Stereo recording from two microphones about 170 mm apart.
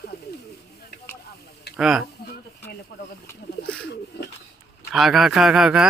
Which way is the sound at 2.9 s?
75° left (ahead or behind).